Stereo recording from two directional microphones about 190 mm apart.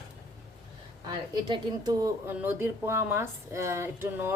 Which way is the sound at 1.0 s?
20° right (ahead or behind).